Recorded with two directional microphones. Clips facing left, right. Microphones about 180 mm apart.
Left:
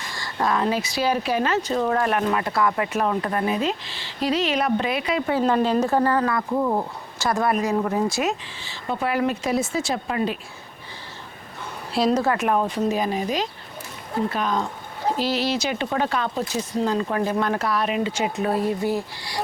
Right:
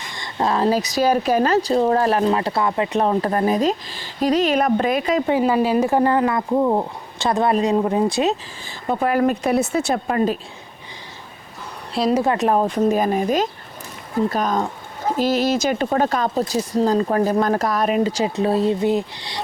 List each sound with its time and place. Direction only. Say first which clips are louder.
0.1 s speech: right 2 dB; 25° right (ahead or behind); by 5.2 s 45° right (ahead or behind)
5.4 s speech: right 2 dB; 5° right (ahead or behind); by 8.3 s 20° right (ahead or behind)
8.9 s speech: right 5 dB; 45° right (ahead or behind)
12.1 s speech: right 3 dB; 20° right (ahead or behind)
12.4 s speech: right 4 dB; 35° right (ahead or behind)
18.4 s speech: right 5 dB; 25° right (ahead or behind)